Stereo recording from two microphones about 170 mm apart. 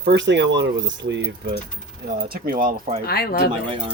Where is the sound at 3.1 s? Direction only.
65° left (ahead or behind).